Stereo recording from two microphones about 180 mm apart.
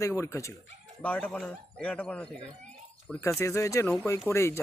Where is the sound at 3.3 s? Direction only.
15° left (ahead or behind).